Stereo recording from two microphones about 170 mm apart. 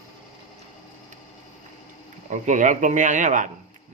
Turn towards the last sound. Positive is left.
turn(degrees=-50)  # may be behind; listen again after turning